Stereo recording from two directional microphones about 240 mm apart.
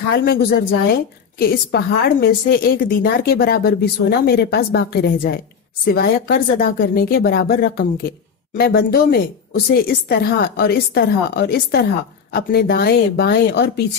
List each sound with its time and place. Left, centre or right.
0.1 s a woman's voice: left